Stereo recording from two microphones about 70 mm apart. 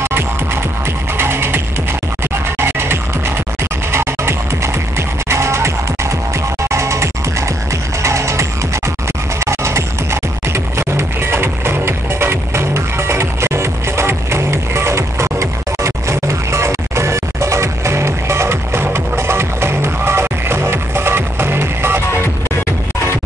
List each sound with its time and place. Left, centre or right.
1.1 s music: right
6.7 s music: right